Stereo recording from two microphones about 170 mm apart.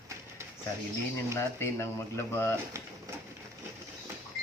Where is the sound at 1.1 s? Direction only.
15° left (ahead or behind).